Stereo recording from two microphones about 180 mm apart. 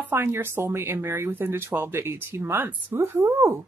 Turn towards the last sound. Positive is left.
turn(degrees=-15)  # may be behind; listen again after turning